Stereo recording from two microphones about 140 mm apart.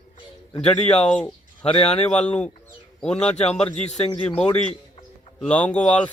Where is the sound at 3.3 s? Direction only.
50° left (ahead or behind).